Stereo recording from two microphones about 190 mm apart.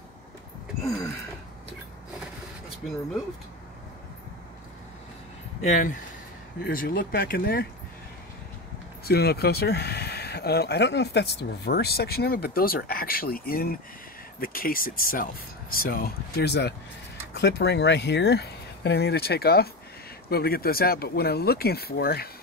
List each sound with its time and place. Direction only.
5.7 s speech: 40° left (ahead or behind)
9.0 s speech: 55° left (ahead or behind)